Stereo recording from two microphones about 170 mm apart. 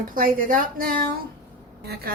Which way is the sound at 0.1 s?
55° right (ahead or behind).